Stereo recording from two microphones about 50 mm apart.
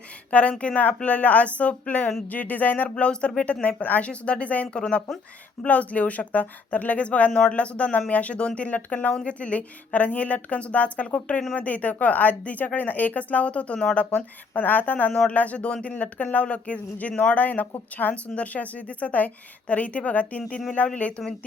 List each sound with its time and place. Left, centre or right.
0.3 s speech: left
2.9 s speech: centre